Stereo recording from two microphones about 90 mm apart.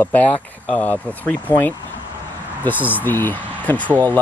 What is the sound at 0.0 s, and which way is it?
Speech, 20° left (ahead or behind).